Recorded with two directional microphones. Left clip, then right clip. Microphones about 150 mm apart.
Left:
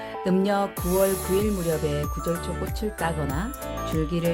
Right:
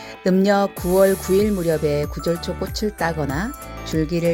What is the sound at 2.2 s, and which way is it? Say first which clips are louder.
Speech: right 5 dB; 10° right (ahead or behind).